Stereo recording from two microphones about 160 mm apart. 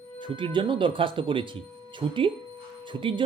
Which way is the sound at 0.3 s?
30° right (ahead or behind).